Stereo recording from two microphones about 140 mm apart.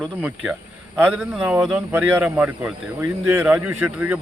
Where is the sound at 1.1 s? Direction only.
5° right (ahead or behind).